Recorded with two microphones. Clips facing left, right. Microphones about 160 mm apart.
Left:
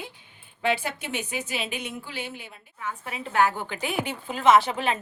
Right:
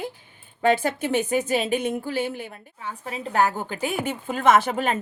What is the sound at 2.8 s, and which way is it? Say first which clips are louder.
A woman's voice: right 2 dB; 35° right (ahead or behind).